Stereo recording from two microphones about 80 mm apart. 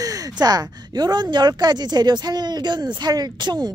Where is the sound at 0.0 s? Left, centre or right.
Right.